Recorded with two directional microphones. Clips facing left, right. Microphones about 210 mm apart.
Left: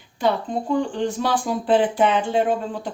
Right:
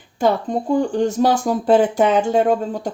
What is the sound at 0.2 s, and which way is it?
Speech, 45° right (ahead or behind).